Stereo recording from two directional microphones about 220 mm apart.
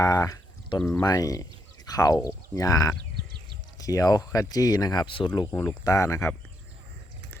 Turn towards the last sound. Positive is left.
turn(degrees=15)  # may be behind; listen again after turning